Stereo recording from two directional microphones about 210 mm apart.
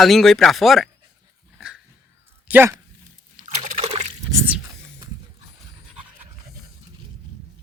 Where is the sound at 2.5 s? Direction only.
10° right (ahead or behind).